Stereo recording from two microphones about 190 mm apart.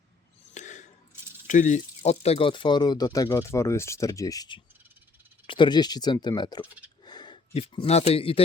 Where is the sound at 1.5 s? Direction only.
40° left (ahead or behind).